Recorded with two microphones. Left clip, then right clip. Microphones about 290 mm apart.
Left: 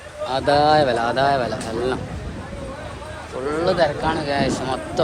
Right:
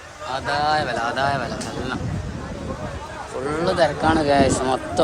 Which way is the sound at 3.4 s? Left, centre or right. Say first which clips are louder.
Left 1 dB; centre.